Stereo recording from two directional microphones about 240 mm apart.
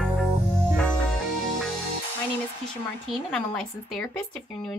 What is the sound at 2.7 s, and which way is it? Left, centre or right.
Speech, centre.